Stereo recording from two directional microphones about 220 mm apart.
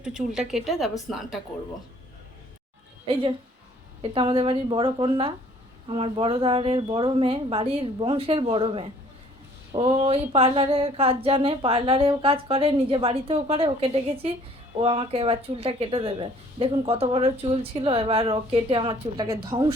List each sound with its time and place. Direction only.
0.0 s a woman's voice: 5° right (ahead or behind)
3.1 s speech: 25° right (ahead or behind)